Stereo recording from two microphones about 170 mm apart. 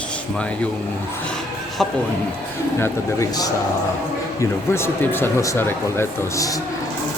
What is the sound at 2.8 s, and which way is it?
Speech, 20° left (ahead or behind).